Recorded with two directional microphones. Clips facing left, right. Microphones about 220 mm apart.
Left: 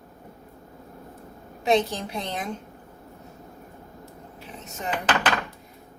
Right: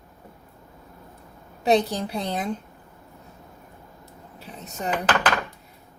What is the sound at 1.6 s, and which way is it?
Speech, 35° right (ahead or behind).